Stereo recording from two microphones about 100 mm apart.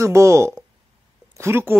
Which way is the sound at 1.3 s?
25° right (ahead or behind).